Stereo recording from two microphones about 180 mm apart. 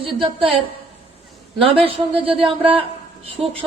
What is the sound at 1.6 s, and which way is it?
A man's voice, 30° right (ahead or behind).